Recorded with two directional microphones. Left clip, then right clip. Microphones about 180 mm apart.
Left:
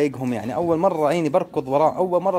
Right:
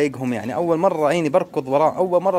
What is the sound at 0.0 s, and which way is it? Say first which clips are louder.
Speech: right 1 dB; centre (ahead or behind).